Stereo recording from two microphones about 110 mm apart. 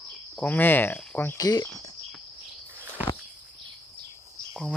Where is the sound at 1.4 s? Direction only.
35° left (ahead or behind).